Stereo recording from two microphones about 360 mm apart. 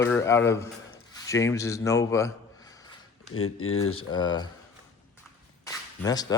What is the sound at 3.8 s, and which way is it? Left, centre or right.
Speech, centre.